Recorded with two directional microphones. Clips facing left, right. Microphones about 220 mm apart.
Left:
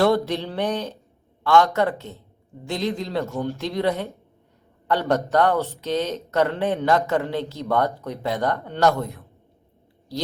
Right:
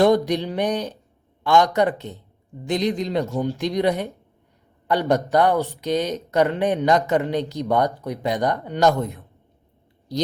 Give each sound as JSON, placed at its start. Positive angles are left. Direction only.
{"t": 0.3, "sound": "speech", "side_deg": -15}